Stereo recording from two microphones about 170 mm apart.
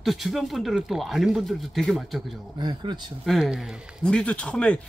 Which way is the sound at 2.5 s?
25° right (ahead or behind).